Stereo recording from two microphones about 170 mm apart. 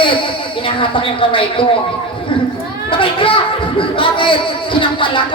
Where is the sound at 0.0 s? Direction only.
30° left (ahead or behind).